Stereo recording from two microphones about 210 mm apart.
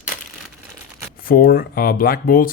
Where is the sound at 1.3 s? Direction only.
45° left (ahead or behind).